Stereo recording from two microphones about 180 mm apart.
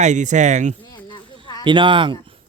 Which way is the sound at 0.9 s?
25° left (ahead or behind).